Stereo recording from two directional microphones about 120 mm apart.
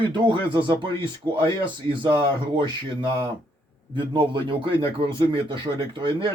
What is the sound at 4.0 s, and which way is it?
Speech, 40° right (ahead or behind).